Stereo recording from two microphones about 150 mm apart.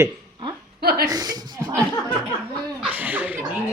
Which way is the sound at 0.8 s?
90° right.